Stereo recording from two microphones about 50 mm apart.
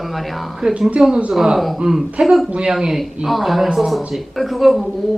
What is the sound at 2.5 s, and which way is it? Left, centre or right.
Speech, centre.